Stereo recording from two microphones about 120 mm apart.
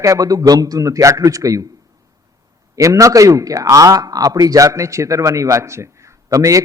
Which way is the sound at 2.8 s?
25° right (ahead or behind).